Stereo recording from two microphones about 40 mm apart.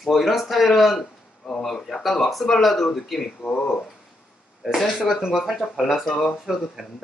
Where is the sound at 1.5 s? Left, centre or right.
Centre.